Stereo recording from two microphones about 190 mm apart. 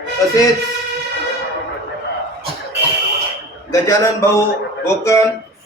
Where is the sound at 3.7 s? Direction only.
15° left (ahead or behind).